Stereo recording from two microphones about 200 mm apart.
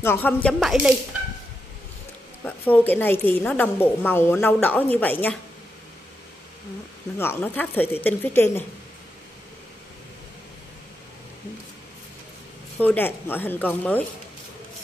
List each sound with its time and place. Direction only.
0.0 s music: 10° left (ahead or behind)
2.4 s a woman's voice: 10° left (ahead or behind)
7.2 s a woman's voice: 10° left (ahead or behind)
12.7 s a woman's voice: 10° left (ahead or behind)